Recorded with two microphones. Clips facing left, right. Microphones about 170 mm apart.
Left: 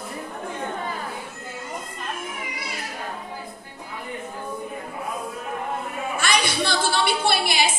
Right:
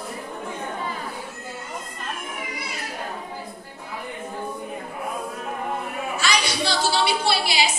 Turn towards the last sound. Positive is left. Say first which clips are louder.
# even
turn(degrees=50)  # may be behind; listen again after turning